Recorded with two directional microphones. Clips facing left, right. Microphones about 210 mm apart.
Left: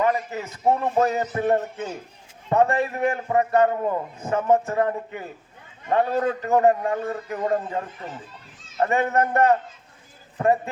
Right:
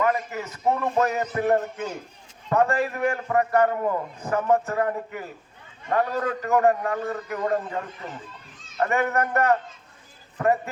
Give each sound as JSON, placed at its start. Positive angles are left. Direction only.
{"t": 0.0, "sound": "a man's voice", "side_deg": 30}